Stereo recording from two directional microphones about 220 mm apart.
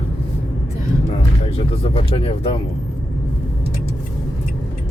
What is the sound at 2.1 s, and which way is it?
Speech, 25° left (ahead or behind).